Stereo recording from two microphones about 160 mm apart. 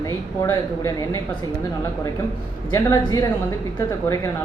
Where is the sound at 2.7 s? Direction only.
20° left (ahead or behind).